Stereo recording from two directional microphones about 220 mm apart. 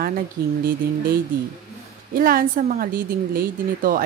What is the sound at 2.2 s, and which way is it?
A woman's voice, 40° right (ahead or behind).